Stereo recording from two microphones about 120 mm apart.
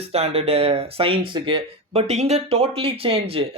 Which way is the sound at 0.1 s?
55° right (ahead or behind).